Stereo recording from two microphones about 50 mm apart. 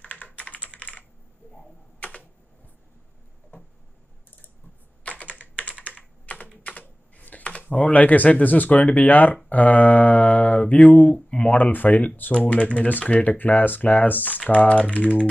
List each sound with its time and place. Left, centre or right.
0.0 s computer keyboard: left
2.0 s typing: left
3.5 s tick-tock: left
5.0 s computer keyboard: left
7.7 s speech: left